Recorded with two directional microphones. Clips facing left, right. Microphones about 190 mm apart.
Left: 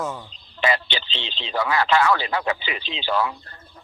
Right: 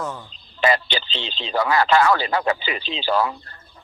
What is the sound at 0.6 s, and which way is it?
Speech, 40° right (ahead or behind).